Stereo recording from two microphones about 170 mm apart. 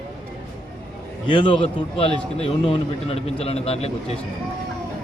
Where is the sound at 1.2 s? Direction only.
30° left (ahead or behind).